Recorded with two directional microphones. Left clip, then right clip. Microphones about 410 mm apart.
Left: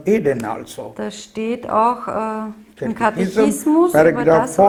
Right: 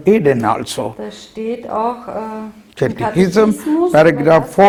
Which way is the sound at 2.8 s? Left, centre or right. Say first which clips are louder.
Right 3 dB; right.